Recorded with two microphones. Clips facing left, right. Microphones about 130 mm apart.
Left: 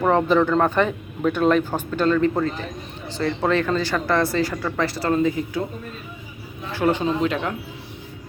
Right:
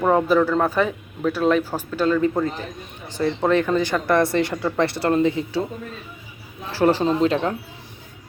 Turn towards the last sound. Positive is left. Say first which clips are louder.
# right 3 dB
turn(degrees=-30)  # may be behind; listen again after turning